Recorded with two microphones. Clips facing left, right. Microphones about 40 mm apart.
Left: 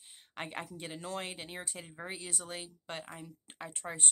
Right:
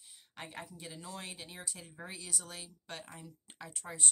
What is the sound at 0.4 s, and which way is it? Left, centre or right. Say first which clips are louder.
Speech: left 5 dB; left.